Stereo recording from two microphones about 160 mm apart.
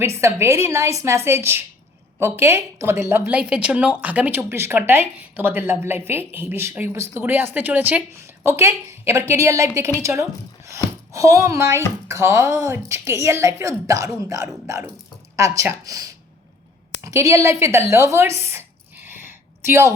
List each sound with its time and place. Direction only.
0.0 s a woman's voice: 15° right (ahead or behind)